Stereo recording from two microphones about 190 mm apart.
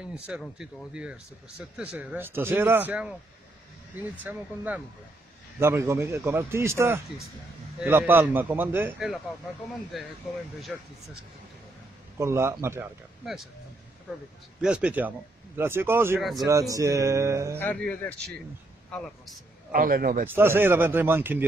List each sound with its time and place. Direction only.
0.1 s a man's voice: 5° right (ahead or behind)
12.2 s speech: 15° right (ahead or behind)
14.6 s speech: 5° right (ahead or behind)
16.2 s a man's voice: centre (ahead or behind)
16.4 s speech: 15° right (ahead or behind)
17.6 s a man's voice: 10° left (ahead or behind)
19.7 s a man's voice: 50° right (ahead or behind)
20.2 s speech: 10° right (ahead or behind)